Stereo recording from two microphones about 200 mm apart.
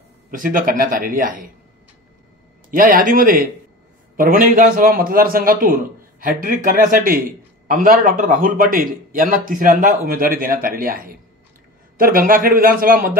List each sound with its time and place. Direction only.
0.3 s a man's voice: 40° right (ahead or behind)
2.7 s a man's voice: 45° right (ahead or behind)